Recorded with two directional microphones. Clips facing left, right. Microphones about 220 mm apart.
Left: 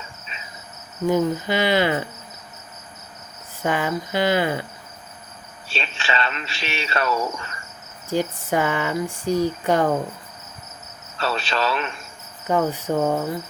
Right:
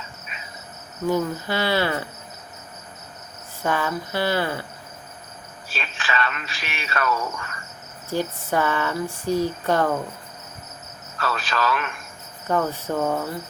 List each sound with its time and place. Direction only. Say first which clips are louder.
1.0 s speech: left 3 dB; 15° left (ahead or behind)
3.6 s speech: left 2 dB; 15° left (ahead or behind)
5.6 s speech: left 3 dB; 25° left (ahead or behind)
11.2 s speech: left 2 dB; 25° left (ahead or behind)
12.5 s speech: left 2 dB; 15° left (ahead or behind)